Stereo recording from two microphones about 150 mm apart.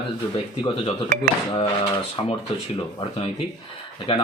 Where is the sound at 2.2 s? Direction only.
35° left (ahead or behind).